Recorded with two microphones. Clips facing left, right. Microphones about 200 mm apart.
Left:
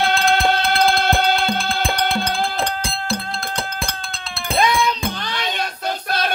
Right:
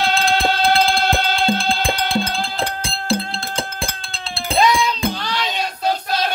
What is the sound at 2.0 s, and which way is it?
Music, 5° right (ahead or behind).